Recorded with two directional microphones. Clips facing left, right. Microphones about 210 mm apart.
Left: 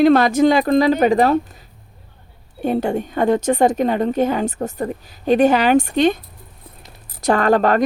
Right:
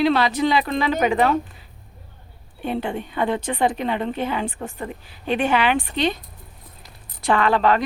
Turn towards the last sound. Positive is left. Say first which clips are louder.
# left 4 dB
turn(degrees=45)  # may be behind; listen again after turning